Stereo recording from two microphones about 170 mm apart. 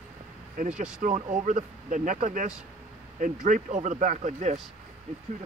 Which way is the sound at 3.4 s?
50° right (ahead or behind).